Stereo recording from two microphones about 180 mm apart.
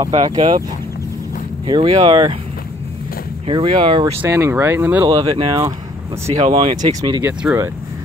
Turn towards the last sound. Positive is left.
turn(degrees=-15)  # may be behind; listen again after turning